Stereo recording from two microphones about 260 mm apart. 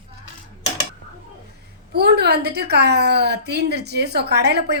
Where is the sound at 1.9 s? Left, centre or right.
Right.